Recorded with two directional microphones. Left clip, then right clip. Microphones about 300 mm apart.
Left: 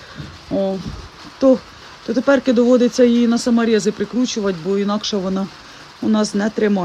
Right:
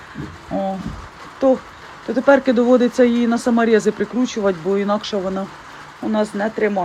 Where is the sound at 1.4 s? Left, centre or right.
Centre.